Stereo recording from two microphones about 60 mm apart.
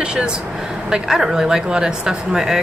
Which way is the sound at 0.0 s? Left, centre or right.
Centre.